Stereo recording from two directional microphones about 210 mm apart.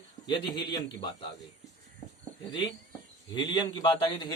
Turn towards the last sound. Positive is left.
turn(degrees=20)  # may be behind; listen again after turning